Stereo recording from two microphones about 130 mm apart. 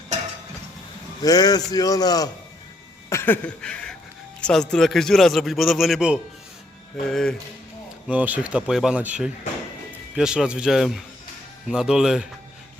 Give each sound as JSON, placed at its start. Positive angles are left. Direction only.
{"t": 1.2, "sound": "a man's voice", "side_deg": 30}
{"t": 3.1, "sound": "a sound", "side_deg": 15}
{"t": 4.4, "sound": "a man's voice", "side_deg": 5}
{"t": 8.1, "sound": "a man's voice", "side_deg": -10}